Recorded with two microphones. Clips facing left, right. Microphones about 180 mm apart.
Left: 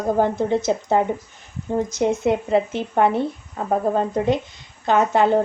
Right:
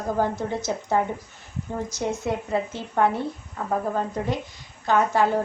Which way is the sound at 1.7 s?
20° left (ahead or behind).